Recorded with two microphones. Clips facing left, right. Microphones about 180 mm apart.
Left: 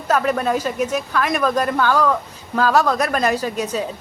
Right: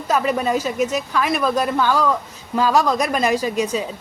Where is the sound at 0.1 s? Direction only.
5° right (ahead or behind).